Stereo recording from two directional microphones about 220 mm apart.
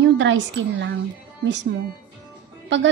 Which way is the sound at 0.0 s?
55° right (ahead or behind).